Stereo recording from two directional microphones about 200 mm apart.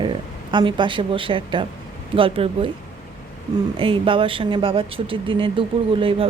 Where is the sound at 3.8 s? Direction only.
25° right (ahead or behind).